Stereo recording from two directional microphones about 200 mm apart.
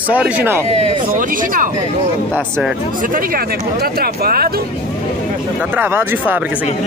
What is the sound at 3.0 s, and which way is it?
Speech, 45° right (ahead or behind).